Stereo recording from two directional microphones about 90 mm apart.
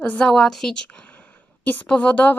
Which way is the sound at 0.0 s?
10° left (ahead or behind).